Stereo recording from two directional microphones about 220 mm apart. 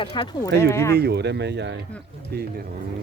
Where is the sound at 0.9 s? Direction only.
50° right (ahead or behind).